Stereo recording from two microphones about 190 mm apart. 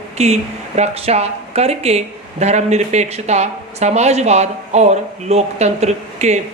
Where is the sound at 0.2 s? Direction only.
35° right (ahead or behind).